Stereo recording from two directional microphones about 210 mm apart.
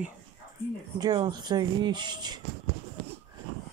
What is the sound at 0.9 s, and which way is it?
Speech, 20° right (ahead or behind).